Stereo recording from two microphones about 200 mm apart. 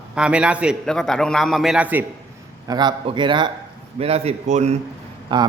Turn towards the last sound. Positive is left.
turn(degrees=-25)  # may be behind; listen again after turning